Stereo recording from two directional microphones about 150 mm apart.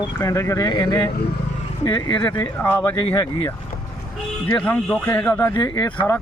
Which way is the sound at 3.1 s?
25° left (ahead or behind).